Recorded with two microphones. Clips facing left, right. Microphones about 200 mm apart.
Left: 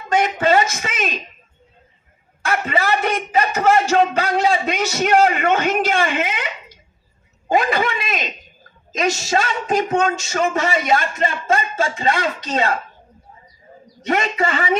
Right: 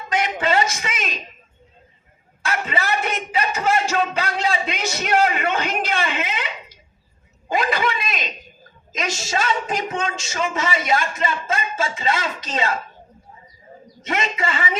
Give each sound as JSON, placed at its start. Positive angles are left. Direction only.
{"t": 0.1, "sound": "speech", "side_deg": 50}
{"t": 2.5, "sound": "speech", "side_deg": 50}
{"t": 14.1, "sound": "speech", "side_deg": 45}